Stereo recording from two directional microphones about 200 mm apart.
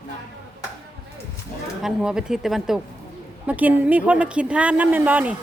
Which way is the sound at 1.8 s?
5° right (ahead or behind).